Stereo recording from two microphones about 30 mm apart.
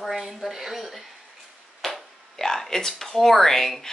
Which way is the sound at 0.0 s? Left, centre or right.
Centre.